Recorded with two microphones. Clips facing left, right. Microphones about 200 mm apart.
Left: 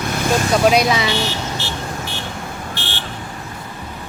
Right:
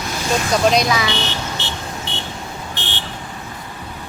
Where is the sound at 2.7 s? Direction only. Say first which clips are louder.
Left 1 dB; 20° right (ahead or behind).